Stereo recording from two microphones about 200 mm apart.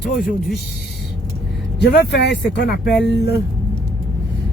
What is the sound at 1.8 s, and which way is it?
Speech, 55° left (ahead or behind).